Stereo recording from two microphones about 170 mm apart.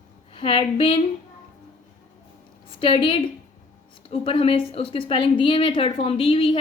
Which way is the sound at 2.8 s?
30° left (ahead or behind).